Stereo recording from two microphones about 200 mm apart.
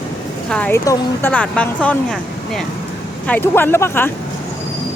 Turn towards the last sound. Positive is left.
turn(degrees=10)  # may be behind; listen again after turning